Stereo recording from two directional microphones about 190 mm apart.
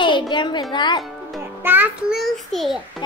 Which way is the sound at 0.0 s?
25° left (ahead or behind).